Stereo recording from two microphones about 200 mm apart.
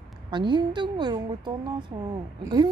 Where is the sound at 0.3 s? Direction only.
20° right (ahead or behind).